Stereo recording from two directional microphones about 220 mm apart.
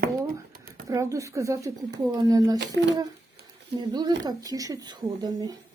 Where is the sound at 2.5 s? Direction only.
50° right (ahead or behind).